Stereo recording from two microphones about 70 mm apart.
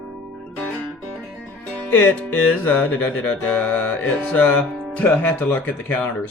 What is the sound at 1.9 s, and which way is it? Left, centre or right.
Speech, left.